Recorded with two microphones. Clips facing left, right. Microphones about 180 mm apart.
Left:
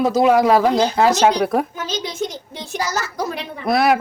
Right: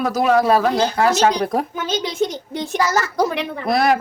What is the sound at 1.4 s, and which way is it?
Speech, 5° left (ahead or behind).